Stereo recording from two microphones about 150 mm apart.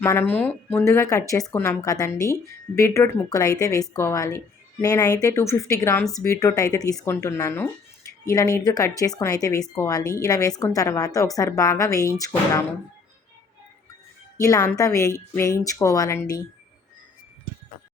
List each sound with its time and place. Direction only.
0.0 s a woman's voice: 15° left (ahead or behind)
14.3 s a woman's voice: 20° left (ahead or behind)